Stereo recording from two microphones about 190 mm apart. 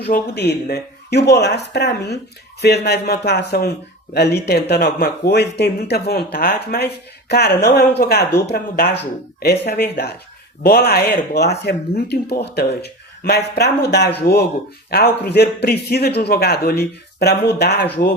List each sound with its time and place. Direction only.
0.0 s speech: 60° left (ahead or behind)